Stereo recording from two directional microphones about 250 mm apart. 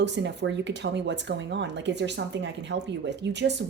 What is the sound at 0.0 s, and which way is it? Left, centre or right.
A woman's voice, right.